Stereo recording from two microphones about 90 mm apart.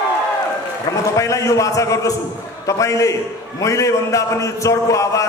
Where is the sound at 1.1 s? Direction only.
35° left (ahead or behind).